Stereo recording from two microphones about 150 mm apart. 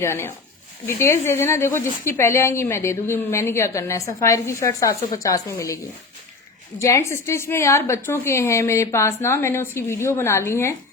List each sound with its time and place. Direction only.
0.0 s a woman's voice: 15° left (ahead or behind)